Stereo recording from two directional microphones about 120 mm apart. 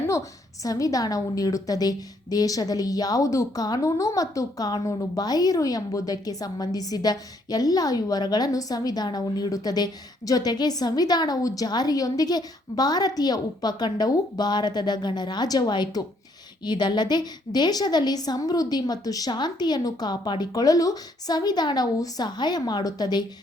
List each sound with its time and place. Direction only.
0.6 s a woman's voice: 30° left (ahead or behind)